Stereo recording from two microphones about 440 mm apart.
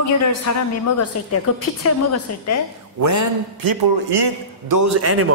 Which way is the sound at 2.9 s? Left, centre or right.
Right.